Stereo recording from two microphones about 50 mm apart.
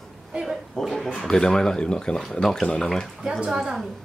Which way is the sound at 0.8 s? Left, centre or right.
Centre.